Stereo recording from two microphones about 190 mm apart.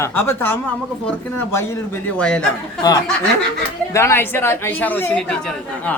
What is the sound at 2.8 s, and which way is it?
Speech, 20° left (ahead or behind).